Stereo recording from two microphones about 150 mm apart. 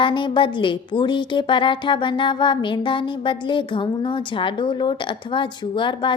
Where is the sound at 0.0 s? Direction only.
35° left (ahead or behind).